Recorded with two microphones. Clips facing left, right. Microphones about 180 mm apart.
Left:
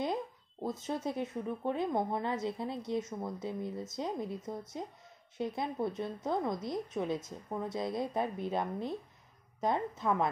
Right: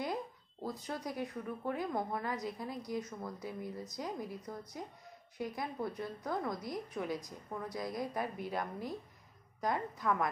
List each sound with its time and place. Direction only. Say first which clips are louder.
0.0 s speech: left 4 dB; 20° left (ahead or behind)